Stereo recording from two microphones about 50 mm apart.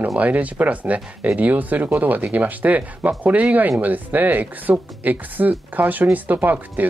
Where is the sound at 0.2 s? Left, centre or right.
Right.